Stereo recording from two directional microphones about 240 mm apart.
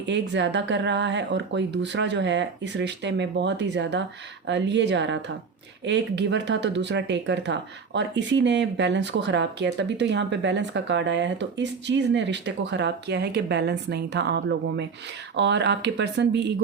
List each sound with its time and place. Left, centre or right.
0.0 s speech: right